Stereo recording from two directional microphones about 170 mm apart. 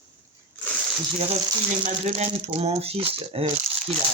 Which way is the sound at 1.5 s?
35° right (ahead or behind).